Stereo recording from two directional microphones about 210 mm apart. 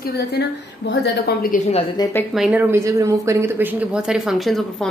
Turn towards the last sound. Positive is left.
turn(degrees=0)  # may be behind; listen again after turning